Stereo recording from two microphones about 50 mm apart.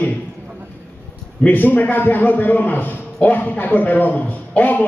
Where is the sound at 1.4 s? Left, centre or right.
Left.